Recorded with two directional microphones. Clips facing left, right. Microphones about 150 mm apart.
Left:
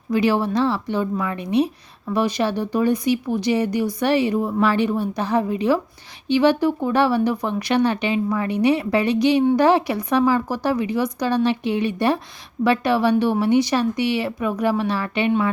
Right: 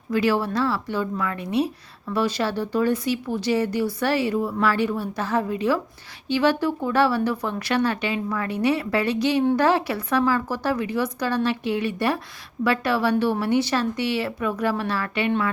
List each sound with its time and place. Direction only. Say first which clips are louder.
0.1 s speech: left 3 dB; 20° left (ahead or behind)